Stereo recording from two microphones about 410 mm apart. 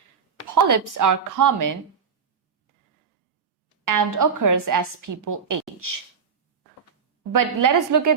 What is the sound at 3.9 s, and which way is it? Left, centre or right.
A woman's voice, right.